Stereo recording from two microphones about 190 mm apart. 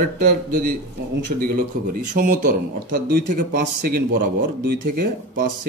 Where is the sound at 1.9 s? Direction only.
45° right (ahead or behind).